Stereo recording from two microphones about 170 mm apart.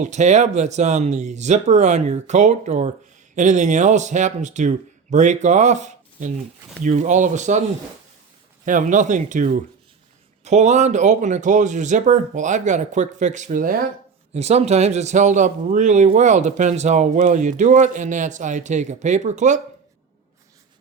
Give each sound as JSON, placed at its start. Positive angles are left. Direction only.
{"t": 0.0, "sound": "speech", "side_deg": -45}
{"t": 8.6, "sound": "speech", "side_deg": -50}
{"t": 14.3, "sound": "speech", "side_deg": -40}